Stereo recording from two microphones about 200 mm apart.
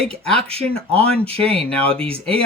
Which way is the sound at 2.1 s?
30° right (ahead or behind).